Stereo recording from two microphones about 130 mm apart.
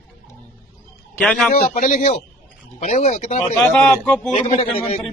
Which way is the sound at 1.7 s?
90° left.